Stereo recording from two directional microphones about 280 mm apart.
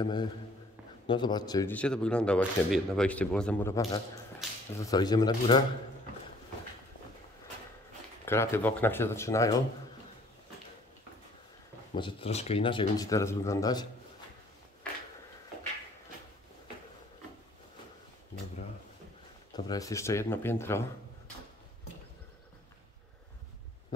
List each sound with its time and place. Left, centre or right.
0.0 s speech: centre
4.4 s whip: centre
4.7 s speech: centre
8.3 s speech: centre
11.9 s speech: centre
19.5 s speech: centre